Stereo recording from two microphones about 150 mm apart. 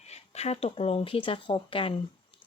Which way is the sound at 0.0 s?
45° left (ahead or behind).